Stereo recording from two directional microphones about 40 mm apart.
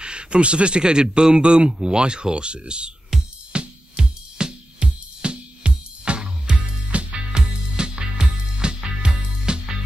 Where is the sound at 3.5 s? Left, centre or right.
Right.